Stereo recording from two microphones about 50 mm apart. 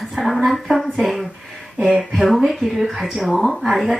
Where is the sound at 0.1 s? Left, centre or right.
Centre.